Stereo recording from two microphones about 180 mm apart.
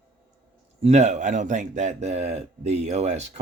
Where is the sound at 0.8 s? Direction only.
40° right (ahead or behind).